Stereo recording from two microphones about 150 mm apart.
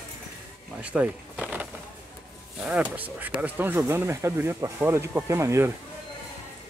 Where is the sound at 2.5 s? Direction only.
5° right (ahead or behind).